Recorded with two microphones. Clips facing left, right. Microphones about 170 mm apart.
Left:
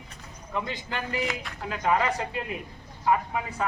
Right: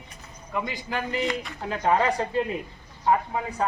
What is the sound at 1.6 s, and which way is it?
Speech, 35° right (ahead or behind).